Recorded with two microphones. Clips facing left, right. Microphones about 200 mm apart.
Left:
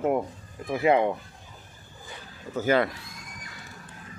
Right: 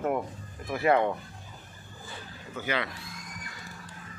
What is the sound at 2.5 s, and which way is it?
Speech, 45° left (ahead or behind).